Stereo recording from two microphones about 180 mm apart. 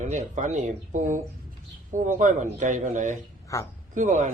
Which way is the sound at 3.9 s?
40° right (ahead or behind).